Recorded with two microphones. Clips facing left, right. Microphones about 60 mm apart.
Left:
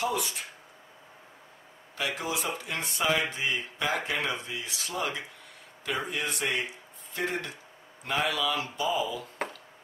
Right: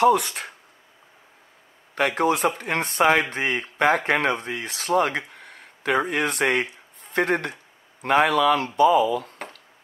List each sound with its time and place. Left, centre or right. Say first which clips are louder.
0.0 s speech: right 12 dB; right
2.0 s speech: right 11 dB; right